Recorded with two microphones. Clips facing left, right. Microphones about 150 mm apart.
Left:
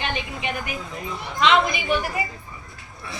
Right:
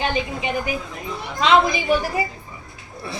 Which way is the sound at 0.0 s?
30° right (ahead or behind).